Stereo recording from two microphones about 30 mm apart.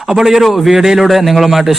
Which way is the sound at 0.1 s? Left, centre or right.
Centre.